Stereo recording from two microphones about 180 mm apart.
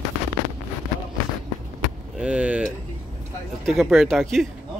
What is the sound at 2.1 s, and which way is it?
Speech, 5° right (ahead or behind).